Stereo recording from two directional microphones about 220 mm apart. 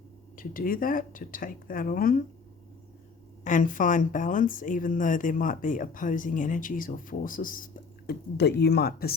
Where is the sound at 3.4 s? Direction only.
35° left (ahead or behind).